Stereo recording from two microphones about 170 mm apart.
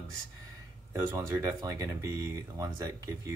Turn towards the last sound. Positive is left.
turn(degrees=-20)  # may be behind; listen again after turning